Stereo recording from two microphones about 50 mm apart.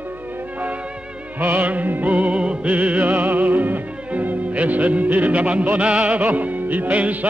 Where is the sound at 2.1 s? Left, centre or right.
Right.